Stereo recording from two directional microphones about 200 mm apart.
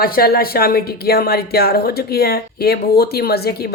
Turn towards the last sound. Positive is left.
turn(degrees=50)  # may be behind; listen again after turning